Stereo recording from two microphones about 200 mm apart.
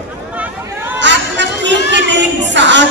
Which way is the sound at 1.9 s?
60° right (ahead or behind).